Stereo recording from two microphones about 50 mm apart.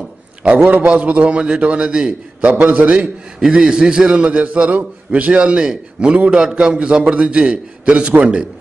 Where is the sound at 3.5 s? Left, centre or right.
Centre.